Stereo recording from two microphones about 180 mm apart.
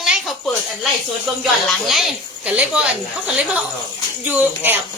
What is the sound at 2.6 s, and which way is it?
Speech, 5° right (ahead or behind).